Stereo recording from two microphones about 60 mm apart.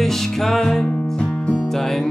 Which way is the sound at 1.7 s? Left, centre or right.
Centre.